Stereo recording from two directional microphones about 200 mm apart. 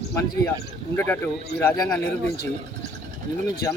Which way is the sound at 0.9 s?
10° left (ahead or behind).